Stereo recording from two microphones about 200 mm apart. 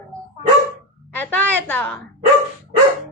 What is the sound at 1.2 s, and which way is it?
Speech, 10° left (ahead or behind).